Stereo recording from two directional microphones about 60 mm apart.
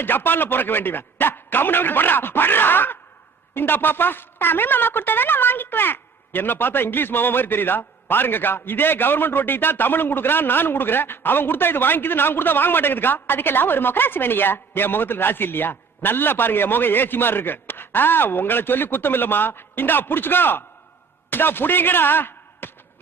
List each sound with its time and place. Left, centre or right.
0.0 s a woman's voice: left